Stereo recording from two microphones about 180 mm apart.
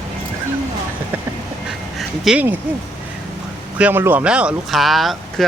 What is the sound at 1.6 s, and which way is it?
Duck, 5° right (ahead or behind).